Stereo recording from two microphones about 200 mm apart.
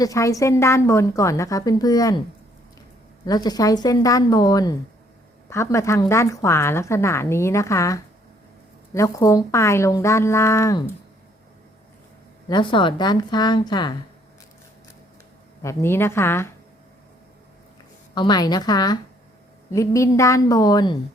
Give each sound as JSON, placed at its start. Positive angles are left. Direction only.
{"t": 0.0, "sound": "a woman's voice", "side_deg": 15}
{"t": 3.2, "sound": "a woman's voice", "side_deg": 20}
{"t": 12.5, "sound": "a woman's voice", "side_deg": 25}
{"t": 15.6, "sound": "a woman's voice", "side_deg": 10}
{"t": 18.1, "sound": "a woman's voice", "side_deg": 20}